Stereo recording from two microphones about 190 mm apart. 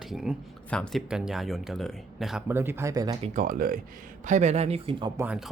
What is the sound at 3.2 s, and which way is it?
Speech, 40° right (ahead or behind).